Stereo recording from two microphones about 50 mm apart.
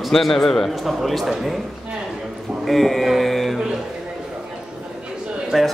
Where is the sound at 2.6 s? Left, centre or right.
Centre.